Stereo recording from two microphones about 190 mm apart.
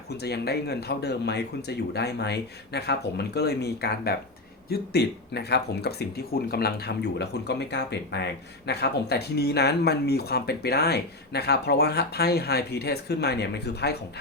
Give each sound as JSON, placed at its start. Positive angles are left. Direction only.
{"t": 0.1, "sound": "speech", "side_deg": 60}